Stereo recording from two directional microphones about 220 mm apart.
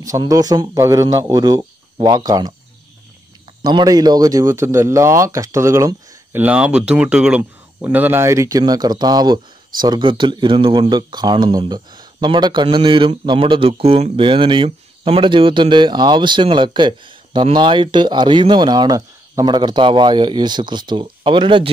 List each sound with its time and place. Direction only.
0.0 s a man's voice: 15° right (ahead or behind)
3.6 s a man's voice: 15° right (ahead or behind)